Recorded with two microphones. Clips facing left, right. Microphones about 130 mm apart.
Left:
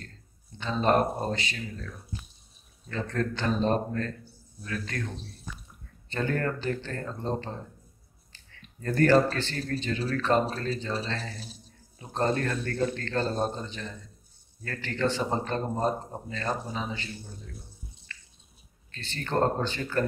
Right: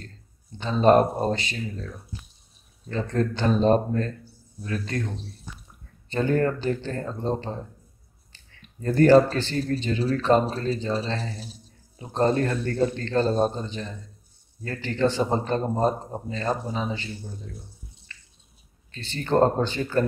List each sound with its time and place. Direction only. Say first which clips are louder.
0.6 s speech: right 6 dB; 30° right (ahead or behind)
2.9 s a man's voice: right 5 dB; 25° right (ahead or behind)
6.0 s speech: right 6 dB; 25° right (ahead or behind)
8.8 s speech: right 5 dB; 25° right (ahead or behind)
18.9 s speech: right 8 dB; 25° right (ahead or behind)